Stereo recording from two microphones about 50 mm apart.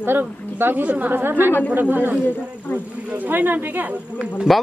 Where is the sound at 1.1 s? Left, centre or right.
Right.